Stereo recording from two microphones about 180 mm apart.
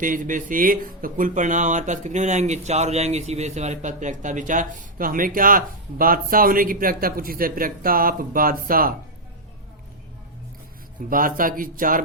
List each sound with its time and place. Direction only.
0.0 s speech: 45° right (ahead or behind)
11.1 s speech: 50° right (ahead or behind)